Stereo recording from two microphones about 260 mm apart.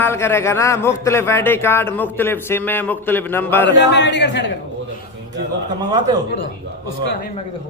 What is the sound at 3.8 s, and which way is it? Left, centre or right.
Speech, left.